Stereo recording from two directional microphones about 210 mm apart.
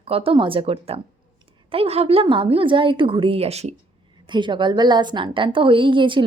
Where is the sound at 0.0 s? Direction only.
25° right (ahead or behind).